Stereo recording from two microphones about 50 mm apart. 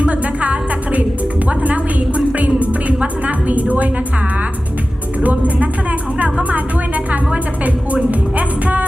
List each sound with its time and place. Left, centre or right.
0.0 s music: right
5.2 s speech: right
8.1 s music: right